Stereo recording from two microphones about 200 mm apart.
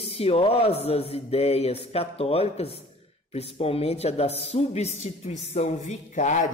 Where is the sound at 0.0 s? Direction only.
30° left (ahead or behind).